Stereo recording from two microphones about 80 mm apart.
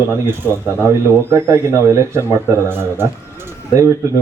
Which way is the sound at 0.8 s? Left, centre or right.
Right.